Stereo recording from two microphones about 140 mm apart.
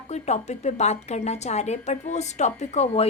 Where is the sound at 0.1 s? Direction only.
55° left (ahead or behind).